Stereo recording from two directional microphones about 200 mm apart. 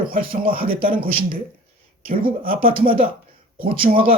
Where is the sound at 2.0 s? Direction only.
45° right (ahead or behind).